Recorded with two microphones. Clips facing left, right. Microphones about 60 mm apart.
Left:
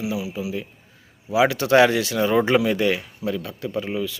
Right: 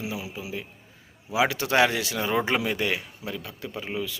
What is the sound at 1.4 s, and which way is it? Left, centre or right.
Speech, centre.